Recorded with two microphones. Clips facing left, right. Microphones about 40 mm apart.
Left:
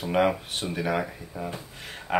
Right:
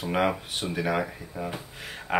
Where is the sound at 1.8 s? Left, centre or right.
Centre.